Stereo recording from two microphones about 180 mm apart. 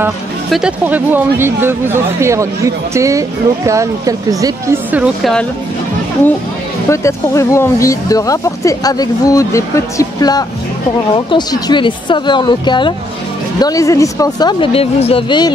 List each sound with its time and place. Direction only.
0.5 s speech: 5° right (ahead or behind)
5.0 s speech: centre (ahead or behind)
6.9 s speech: 15° left (ahead or behind)